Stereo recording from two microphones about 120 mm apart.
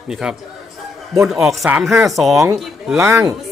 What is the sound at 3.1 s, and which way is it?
Speech, 20° right (ahead or behind).